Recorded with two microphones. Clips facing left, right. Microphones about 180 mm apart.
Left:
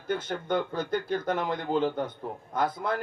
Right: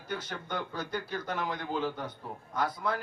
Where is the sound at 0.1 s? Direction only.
50° left (ahead or behind).